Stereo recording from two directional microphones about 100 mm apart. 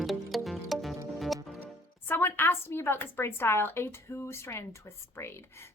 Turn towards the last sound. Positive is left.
turn(degrees=25)  # may be behind; listen again after turning